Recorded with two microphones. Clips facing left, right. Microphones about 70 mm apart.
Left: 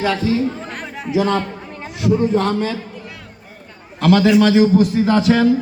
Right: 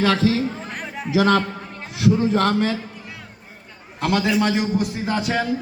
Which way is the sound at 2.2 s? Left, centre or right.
Right.